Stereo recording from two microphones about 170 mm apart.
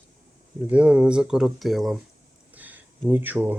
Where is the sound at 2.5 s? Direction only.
10° right (ahead or behind).